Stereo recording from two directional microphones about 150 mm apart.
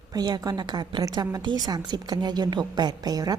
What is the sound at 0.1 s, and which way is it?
A woman's voice, 30° right (ahead or behind).